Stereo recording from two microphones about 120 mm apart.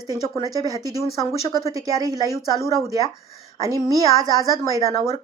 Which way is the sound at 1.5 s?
25° left (ahead or behind).